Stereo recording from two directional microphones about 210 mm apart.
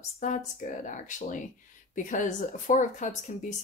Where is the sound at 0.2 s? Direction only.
35° left (ahead or behind).